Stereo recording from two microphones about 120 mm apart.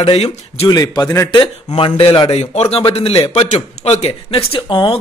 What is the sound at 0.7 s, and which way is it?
Speech, 30° left (ahead or behind).